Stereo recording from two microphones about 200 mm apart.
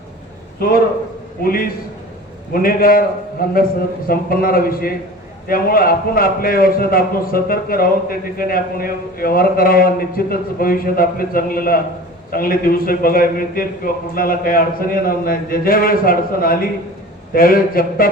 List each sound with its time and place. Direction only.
0.6 s a man's voice: 45° left (ahead or behind)